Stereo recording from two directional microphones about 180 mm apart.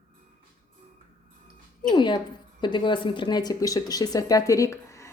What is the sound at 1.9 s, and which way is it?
Speech, 25° left (ahead or behind).